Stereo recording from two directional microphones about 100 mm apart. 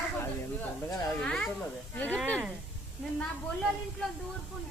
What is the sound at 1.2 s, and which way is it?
Speech, 5° left (ahead or behind).